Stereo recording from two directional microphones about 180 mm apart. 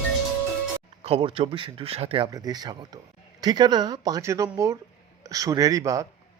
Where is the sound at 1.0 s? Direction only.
30° right (ahead or behind).